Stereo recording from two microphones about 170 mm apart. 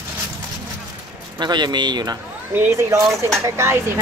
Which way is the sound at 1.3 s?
25° right (ahead or behind).